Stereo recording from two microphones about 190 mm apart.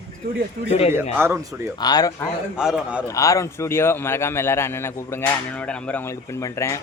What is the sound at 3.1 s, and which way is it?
A man's voice, 15° left (ahead or behind).